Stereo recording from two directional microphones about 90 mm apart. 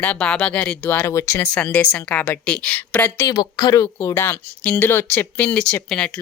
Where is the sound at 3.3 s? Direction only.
50° left (ahead or behind).